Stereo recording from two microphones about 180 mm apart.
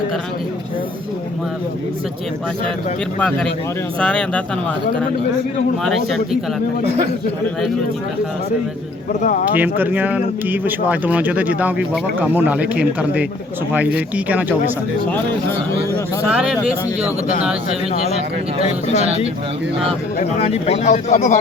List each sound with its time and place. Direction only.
3.2 s speech: 5° left (ahead or behind)
5.8 s speech: centre (ahead or behind)
9.5 s speech: 10° right (ahead or behind)
16.2 s speech: 5° right (ahead or behind)
18.6 s speech: 40° left (ahead or behind)
19.0 s speech: 35° right (ahead or behind)
20.4 s speech: 35° left (ahead or behind)